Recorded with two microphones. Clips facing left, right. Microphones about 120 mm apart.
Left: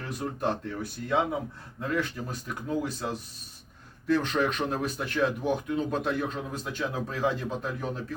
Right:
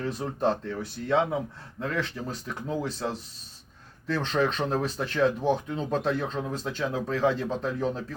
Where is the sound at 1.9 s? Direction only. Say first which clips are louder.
Left 2 dB; 10° left (ahead or behind).